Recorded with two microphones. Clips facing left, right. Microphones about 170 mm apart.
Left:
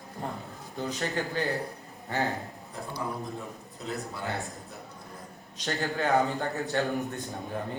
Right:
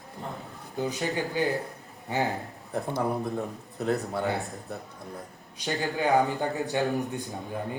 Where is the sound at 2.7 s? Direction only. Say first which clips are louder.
Right 7 dB; 60° right (ahead or behind).